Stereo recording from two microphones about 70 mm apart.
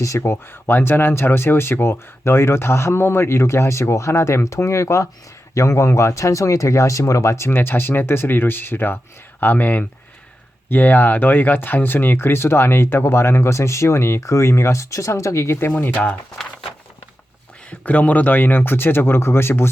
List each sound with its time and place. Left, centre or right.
0.2 s speech: left
15.9 s speech: centre
17.7 s speech: left